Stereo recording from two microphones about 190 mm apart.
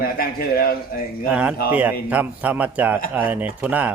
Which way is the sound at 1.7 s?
10° right (ahead or behind).